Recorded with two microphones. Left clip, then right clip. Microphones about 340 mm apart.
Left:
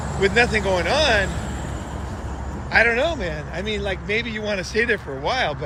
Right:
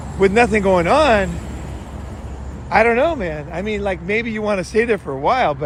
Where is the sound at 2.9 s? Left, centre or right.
Right.